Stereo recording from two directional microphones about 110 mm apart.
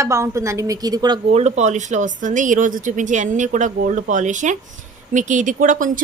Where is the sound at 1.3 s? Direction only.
80° right.